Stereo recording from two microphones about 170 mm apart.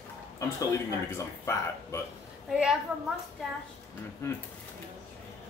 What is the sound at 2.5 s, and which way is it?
Speech, 5° right (ahead or behind).